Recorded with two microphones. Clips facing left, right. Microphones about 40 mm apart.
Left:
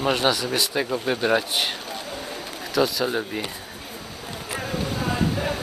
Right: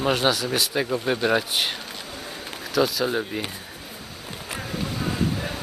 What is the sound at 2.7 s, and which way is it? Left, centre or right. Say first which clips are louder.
Speech: even; centre.